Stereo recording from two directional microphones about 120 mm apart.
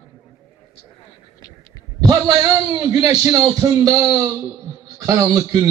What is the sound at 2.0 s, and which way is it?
A man's voice, 30° right (ahead or behind).